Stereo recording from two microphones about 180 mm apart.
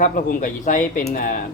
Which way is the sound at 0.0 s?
45° left (ahead or behind).